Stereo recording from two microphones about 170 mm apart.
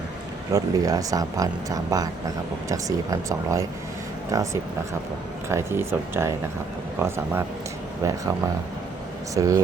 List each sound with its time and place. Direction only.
0.5 s speech: 20° right (ahead or behind)
5.5 s speech: 15° right (ahead or behind)
8.0 s speech: 20° right (ahead or behind)
9.3 s speech: 20° right (ahead or behind)